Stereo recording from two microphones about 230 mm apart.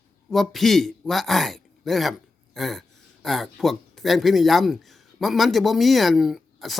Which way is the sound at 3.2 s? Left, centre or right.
Centre.